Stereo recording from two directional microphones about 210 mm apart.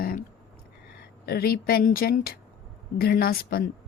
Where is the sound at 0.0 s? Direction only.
45° left (ahead or behind).